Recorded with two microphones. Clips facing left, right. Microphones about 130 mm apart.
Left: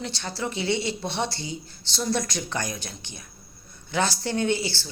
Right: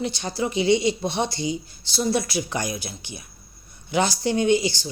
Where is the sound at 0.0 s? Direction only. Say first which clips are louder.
Right 5 dB; 15° right (ahead or behind).